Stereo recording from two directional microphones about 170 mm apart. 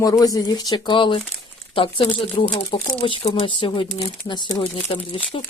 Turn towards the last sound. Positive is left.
turn(degrees=35)  # may be behind; listen again after turning